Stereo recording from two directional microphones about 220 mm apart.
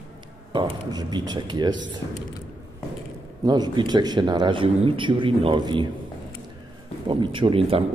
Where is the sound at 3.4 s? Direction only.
20° right (ahead or behind).